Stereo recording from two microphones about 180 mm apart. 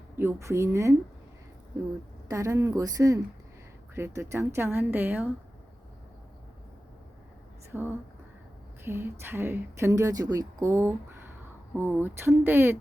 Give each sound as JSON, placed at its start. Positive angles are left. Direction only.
{"t": 0.2, "sound": "speech", "side_deg": -15}
{"t": 2.3, "sound": "speech", "side_deg": -15}
{"t": 7.7, "sound": "speech", "side_deg": -10}